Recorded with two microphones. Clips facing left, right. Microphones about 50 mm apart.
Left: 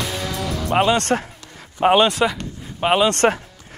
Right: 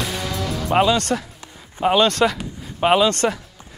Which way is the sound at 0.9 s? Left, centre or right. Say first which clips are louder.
Left 2 dB; left.